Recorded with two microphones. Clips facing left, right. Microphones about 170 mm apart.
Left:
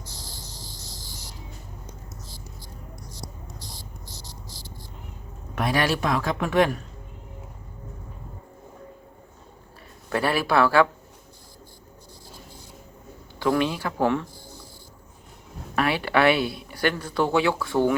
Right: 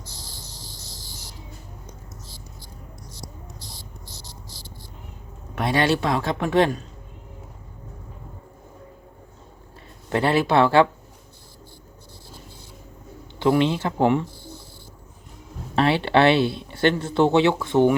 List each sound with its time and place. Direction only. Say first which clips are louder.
4.1 s cricket: even; 30° right (ahead or behind)
5.6 s speech: right 3 dB; 25° right (ahead or behind)
10.1 s speech: right 3 dB; 25° right (ahead or behind)
13.4 s speech: right 4 dB; 25° right (ahead or behind)
15.7 s speech: right 4 dB; 25° right (ahead or behind)